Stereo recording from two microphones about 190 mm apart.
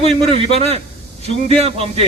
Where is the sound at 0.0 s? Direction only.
30° right (ahead or behind).